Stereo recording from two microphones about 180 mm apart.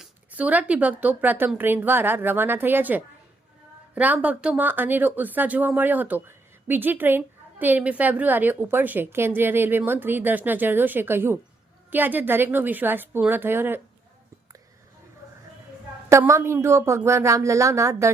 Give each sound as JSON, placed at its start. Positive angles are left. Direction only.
{"t": 0.0, "sound": "speech", "side_deg": -10}
{"t": 16.0, "sound": "speech", "side_deg": -15}